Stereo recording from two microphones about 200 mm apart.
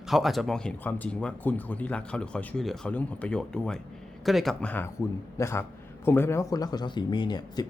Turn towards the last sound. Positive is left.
turn(degrees=20)  # may be behind; listen again after turning